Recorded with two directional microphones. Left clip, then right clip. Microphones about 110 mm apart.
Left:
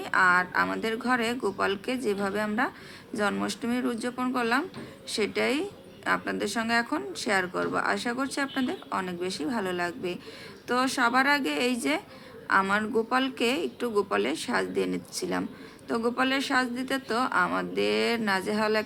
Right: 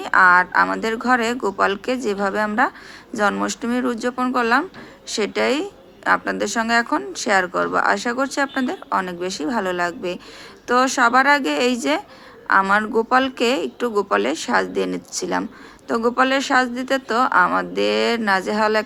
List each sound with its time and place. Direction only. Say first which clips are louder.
0.0 s a woman's voice: right 9 dB; 30° right (ahead or behind)